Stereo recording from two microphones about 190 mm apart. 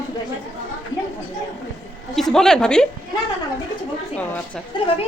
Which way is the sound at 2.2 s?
Centre (ahead or behind).